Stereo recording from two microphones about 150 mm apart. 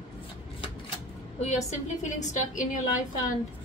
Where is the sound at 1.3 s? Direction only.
50° left (ahead or behind).